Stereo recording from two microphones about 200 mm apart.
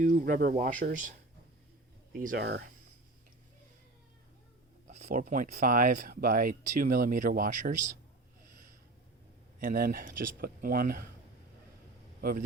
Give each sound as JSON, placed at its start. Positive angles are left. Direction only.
{"t": 0.0, "sound": "speech", "side_deg": -40}
{"t": 2.1, "sound": "speech", "side_deg": -45}
{"t": 4.9, "sound": "speech", "side_deg": -35}
{"t": 9.6, "sound": "speech", "side_deg": -45}
{"t": 12.2, "sound": "speech", "side_deg": -45}